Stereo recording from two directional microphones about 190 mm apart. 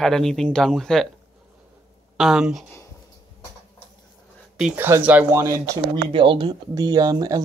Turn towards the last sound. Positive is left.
turn(degrees=-20)  # may be behind; listen again after turning